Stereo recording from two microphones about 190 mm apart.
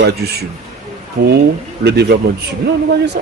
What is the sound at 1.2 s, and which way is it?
Speech, 50° right (ahead or behind).